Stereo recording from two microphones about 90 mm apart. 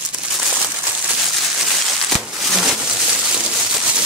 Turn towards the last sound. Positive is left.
turn(degrees=-5)  # may be behind; listen again after turning